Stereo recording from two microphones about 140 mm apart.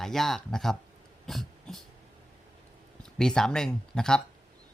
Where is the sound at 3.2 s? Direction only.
5° left (ahead or behind).